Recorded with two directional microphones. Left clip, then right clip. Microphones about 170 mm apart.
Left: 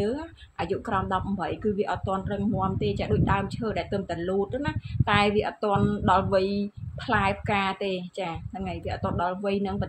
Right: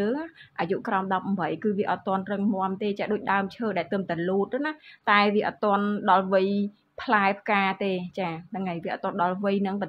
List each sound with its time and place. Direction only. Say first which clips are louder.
0.0 s speech: right 1 dB; 5° left (ahead or behind)